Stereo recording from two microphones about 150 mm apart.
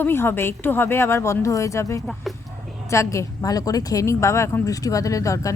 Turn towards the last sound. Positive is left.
turn(degrees=20)  # may be behind; listen again after turning